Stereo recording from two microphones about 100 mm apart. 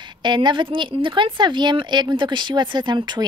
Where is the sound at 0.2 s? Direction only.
50° right (ahead or behind).